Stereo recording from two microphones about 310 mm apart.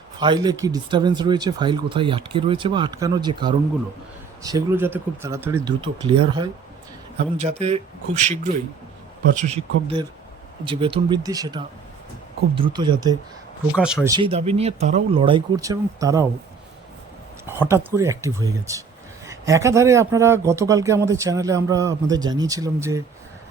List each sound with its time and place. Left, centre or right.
0.2 s speech: centre
13.7 s speech: centre
17.6 s speech: centre